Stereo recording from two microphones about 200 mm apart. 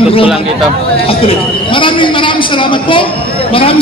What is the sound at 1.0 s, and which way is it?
A man's voice, 25° left (ahead or behind).